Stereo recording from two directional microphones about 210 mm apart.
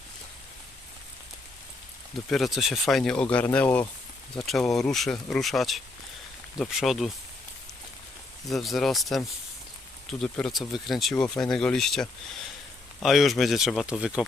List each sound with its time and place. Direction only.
2.3 s speech: centre (ahead or behind)
8.4 s speech: centre (ahead or behind)